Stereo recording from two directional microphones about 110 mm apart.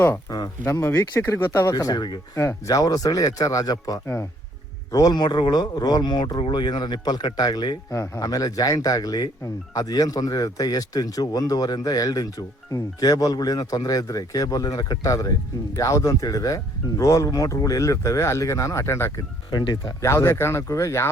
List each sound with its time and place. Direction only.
0.0 s speech: 30° left (ahead or behind)
1.7 s speech: 40° left (ahead or behind)
4.0 s speech: 25° left (ahead or behind)
4.9 s speech: 35° left (ahead or behind)
19.5 s speech: 40° left (ahead or behind)
20.0 s speech: 25° left (ahead or behind)